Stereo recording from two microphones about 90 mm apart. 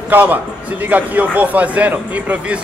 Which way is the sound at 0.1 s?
20° right (ahead or behind).